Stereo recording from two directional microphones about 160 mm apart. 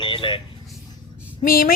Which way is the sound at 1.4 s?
65° left (ahead or behind).